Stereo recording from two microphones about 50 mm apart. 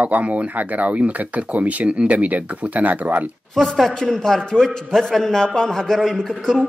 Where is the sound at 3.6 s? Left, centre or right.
Centre.